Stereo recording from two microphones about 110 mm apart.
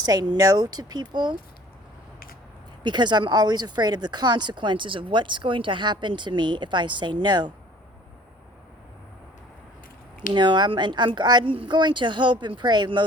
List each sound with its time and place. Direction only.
0.0 s speech: 40° right (ahead or behind)
2.8 s speech: 45° right (ahead or behind)
10.3 s speech: 45° right (ahead or behind)